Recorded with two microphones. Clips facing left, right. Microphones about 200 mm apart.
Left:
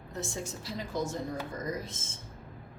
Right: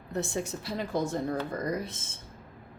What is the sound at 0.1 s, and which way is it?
A woman's voice, 60° right (ahead or behind).